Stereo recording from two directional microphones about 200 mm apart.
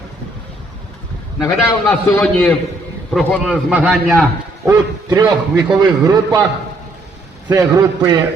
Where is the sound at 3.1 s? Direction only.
5° left (ahead or behind).